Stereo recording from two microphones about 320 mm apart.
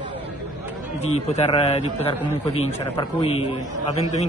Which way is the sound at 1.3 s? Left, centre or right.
Centre.